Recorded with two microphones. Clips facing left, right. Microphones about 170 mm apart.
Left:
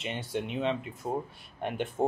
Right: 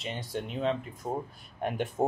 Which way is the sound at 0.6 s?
Centre (ahead or behind).